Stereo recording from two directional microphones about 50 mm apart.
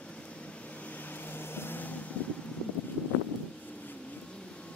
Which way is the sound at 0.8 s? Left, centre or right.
Left.